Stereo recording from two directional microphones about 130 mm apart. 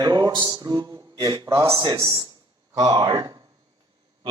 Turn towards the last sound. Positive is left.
turn(degrees=-30)  # may be behind; listen again after turning